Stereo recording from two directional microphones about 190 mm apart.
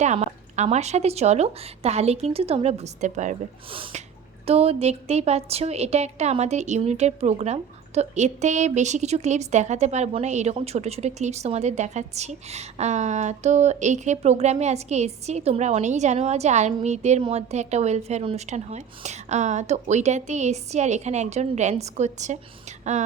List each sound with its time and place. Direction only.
0.0 s a woman's voice: 40° right (ahead or behind)